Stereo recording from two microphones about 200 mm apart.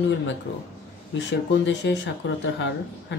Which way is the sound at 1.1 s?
65° left (ahead or behind).